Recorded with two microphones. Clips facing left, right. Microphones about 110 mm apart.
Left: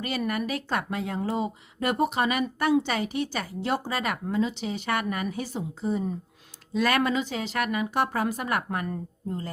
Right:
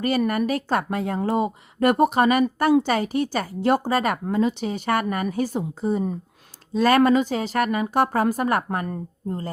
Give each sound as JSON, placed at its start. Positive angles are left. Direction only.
{"t": 0.0, "sound": "speech", "side_deg": -45}
{"t": 6.7, "sound": "speech", "side_deg": -35}